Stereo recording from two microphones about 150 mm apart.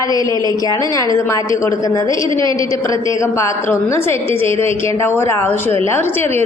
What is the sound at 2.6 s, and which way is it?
A woman's voice, 20° left (ahead or behind).